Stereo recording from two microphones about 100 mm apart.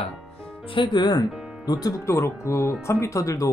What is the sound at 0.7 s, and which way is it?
Speech, 50° left (ahead or behind).